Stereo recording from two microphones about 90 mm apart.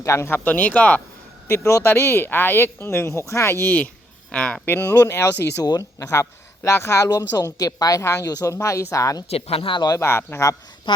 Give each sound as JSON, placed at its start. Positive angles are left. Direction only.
{"t": 0.0, "sound": "speech", "side_deg": 30}
{"t": 1.5, "sound": "speech", "side_deg": 30}
{"t": 4.3, "sound": "speech", "side_deg": 10}
{"t": 4.7, "sound": "speech", "side_deg": 25}
{"t": 5.6, "sound": "speech", "side_deg": 45}
{"t": 7.1, "sound": "a woman's voice", "side_deg": 45}
{"t": 9.5, "sound": "speech", "side_deg": 80}
{"t": 10.0, "sound": "speech", "side_deg": 25}
{"t": 10.9, "sound": "speech", "side_deg": 65}